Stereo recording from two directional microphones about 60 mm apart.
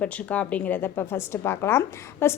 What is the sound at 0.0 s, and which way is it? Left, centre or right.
Speech, left.